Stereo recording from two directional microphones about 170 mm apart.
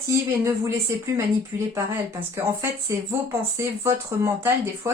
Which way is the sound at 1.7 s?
15° right (ahead or behind).